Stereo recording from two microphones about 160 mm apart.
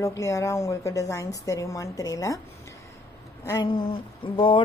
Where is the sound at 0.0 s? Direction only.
20° left (ahead or behind).